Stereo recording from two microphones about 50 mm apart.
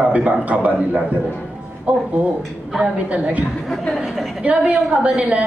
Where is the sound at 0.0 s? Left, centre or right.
Right.